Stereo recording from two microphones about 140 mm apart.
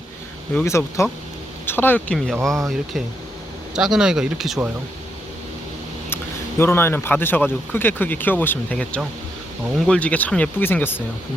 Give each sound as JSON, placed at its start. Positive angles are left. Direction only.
{"t": 0.6, "sound": "speech", "side_deg": 20}
{"t": 2.1, "sound": "speech", "side_deg": 0}
{"t": 3.8, "sound": "speech", "side_deg": -5}
{"t": 6.6, "sound": "speech", "side_deg": 15}